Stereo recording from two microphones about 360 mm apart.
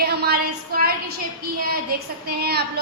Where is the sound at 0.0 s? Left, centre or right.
Right.